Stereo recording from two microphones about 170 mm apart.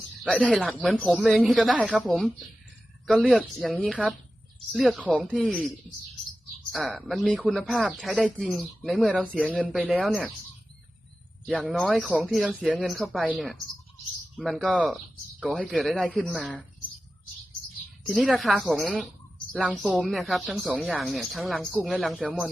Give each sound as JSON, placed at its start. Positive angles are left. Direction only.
{"t": 0.2, "sound": "speech", "side_deg": 0}
{"t": 9.4, "sound": "speech", "side_deg": -5}
{"t": 11.4, "sound": "speech", "side_deg": 5}
{"t": 18.0, "sound": "speech", "side_deg": 0}